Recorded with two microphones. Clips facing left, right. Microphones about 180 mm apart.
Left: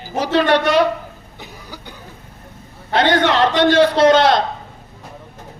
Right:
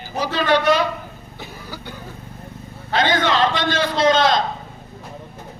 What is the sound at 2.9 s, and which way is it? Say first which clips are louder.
A man's voice: left 3 dB; 70° left (ahead or behind).